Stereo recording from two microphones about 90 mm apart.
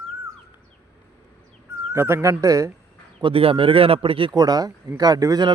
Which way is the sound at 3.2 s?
75° right (ahead or behind).